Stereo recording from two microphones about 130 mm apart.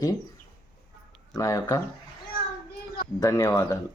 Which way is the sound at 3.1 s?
25° left (ahead or behind).